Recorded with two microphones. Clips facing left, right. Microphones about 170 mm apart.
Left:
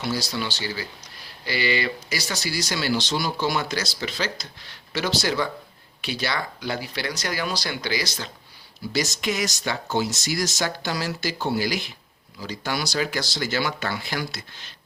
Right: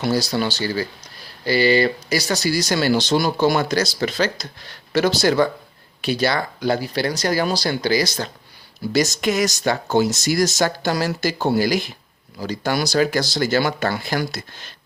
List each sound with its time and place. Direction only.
0.0 s speech: 40° right (ahead or behind)